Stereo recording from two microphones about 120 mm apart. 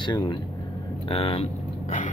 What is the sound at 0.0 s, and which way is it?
Speech, 35° left (ahead or behind).